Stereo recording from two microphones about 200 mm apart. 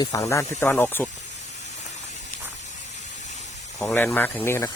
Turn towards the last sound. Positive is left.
turn(degrees=10)  # may be behind; listen again after turning